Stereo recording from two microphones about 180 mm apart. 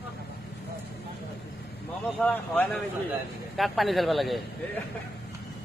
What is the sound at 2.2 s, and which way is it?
A man's voice, 10° left (ahead or behind).